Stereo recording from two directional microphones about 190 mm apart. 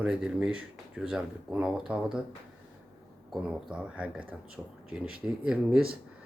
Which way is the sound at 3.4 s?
5° right (ahead or behind).